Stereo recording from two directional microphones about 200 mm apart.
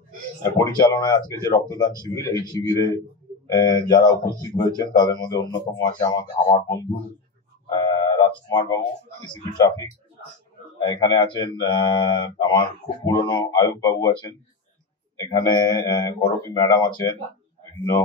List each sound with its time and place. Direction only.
0.4 s speech: 20° left (ahead or behind)
7.7 s a sound: 20° left (ahead or behind)
10.9 s speech: 20° left (ahead or behind)